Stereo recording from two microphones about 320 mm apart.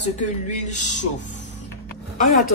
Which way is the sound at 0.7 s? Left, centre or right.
Left.